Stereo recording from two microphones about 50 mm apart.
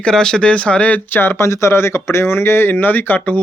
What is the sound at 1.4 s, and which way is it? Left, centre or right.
Speech, left.